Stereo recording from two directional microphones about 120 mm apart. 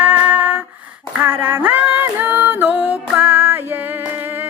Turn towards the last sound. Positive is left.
turn(degrees=-15)  # may be behind; listen again after turning